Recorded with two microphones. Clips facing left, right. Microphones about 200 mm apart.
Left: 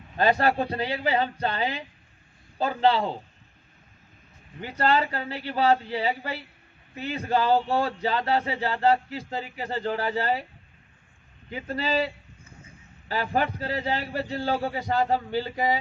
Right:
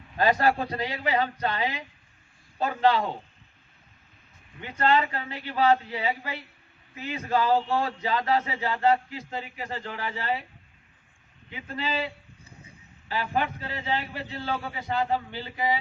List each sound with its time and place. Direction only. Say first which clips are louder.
0.2 s a man's voice: left 1 dB; 30° left (ahead or behind)
4.6 s a man's voice: even; 35° left (ahead or behind)
11.5 s a man's voice: left 5 dB; 40° left (ahead or behind)